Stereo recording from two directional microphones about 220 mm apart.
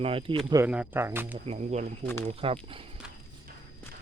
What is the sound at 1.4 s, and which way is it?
Speech, 30° right (ahead or behind).